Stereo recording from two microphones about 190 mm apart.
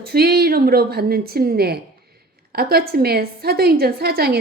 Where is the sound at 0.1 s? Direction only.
55° right (ahead or behind).